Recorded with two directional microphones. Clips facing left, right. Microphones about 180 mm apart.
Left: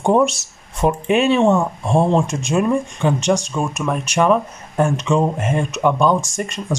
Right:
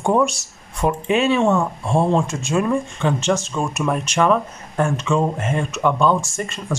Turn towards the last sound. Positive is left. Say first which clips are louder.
# left 2 dB
turn(degrees=15)  # may be behind; listen again after turning